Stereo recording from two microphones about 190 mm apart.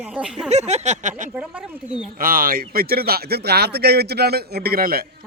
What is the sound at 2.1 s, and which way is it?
Speech, 50° right (ahead or behind).